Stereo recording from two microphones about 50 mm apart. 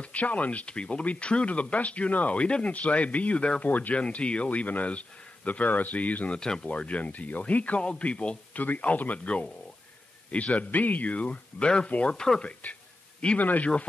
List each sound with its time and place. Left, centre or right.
0.0 s speech: left
3.7 s speech: left
4.0 s speech: left
6.4 s speech: centre
6.7 s speech: left
8.6 s speech: left